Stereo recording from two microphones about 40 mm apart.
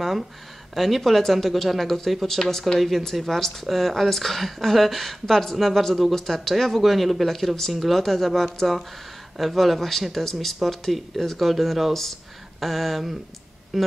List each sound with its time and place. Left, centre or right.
0.7 s speech: centre